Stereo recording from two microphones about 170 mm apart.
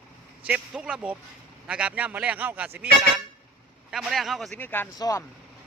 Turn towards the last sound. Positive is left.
turn(degrees=20)  # may be behind; listen again after turning